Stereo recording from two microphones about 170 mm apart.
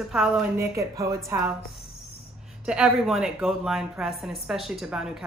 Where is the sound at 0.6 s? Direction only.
20° right (ahead or behind).